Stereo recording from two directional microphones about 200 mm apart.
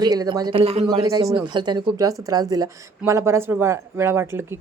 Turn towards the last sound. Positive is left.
turn(degrees=-10)  # may be behind; listen again after turning